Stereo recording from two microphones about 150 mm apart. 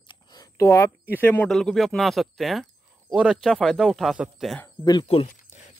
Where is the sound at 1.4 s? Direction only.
Centre (ahead or behind).